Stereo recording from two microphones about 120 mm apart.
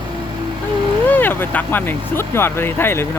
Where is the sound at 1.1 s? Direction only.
15° left (ahead or behind).